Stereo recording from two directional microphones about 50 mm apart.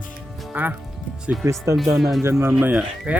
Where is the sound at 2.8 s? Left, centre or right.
Right.